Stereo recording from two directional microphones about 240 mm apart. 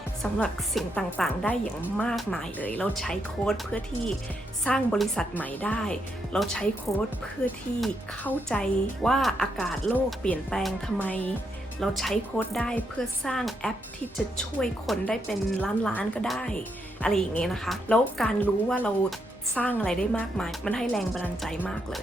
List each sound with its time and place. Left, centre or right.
0.2 s a woman's voice: centre